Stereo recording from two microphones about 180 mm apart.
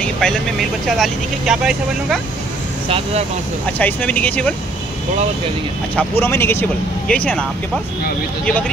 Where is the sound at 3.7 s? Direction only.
10° left (ahead or behind).